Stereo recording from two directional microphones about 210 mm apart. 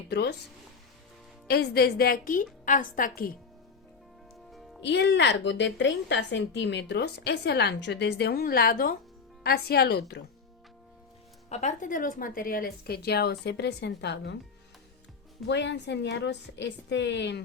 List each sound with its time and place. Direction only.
0.1 s a woman's voice: 50° left (ahead or behind)
1.5 s a woman's voice: 50° left (ahead or behind)
4.8 s a woman's voice: 55° left (ahead or behind)
11.4 s a woman's voice: 35° left (ahead or behind); by 14.3 s 55° left (ahead or behind)
15.4 s a woman's voice: 55° left (ahead or behind)